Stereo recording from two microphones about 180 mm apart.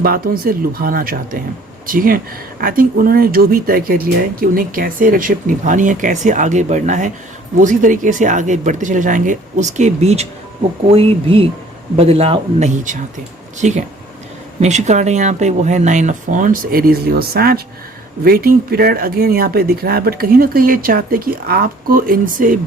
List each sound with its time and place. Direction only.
0.0 s speech: 55° right (ahead or behind)